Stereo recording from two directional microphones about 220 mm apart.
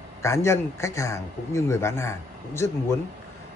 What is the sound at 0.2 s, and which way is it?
A man's voice, 10° left (ahead or behind).